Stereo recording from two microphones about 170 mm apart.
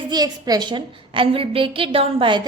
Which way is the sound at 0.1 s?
20° right (ahead or behind).